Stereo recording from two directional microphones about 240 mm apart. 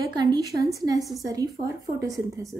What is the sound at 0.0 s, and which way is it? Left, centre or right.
Speech, centre.